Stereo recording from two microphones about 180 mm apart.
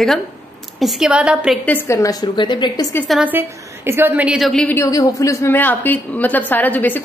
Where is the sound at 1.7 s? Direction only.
15° left (ahead or behind).